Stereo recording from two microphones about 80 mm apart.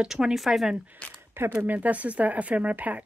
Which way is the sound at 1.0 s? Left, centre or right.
Centre.